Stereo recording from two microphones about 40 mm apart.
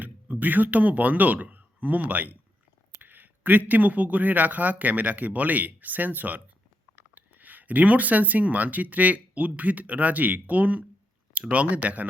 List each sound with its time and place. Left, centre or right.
0.0 s speech: right